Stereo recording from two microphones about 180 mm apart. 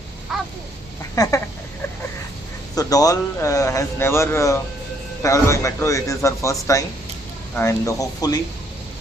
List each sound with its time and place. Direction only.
0.3 s crow: centre (ahead or behind)
1.1 s a sound: 20° left (ahead or behind)
2.7 s a man's voice: 20° left (ahead or behind)